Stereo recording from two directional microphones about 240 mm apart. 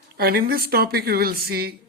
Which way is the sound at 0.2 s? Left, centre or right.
Right.